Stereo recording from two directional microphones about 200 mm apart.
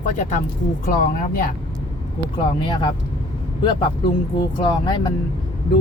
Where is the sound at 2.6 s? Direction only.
25° left (ahead or behind).